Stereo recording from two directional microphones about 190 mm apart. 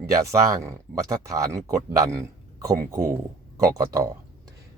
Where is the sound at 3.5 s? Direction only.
15° right (ahead or behind).